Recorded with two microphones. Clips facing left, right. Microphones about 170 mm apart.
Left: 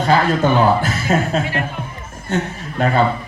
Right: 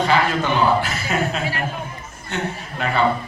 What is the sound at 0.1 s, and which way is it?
A man's voice, 40° left (ahead or behind).